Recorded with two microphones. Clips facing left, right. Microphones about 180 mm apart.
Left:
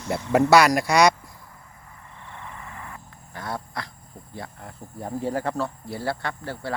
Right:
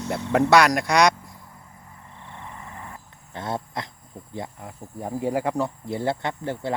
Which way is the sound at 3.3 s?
25° right (ahead or behind).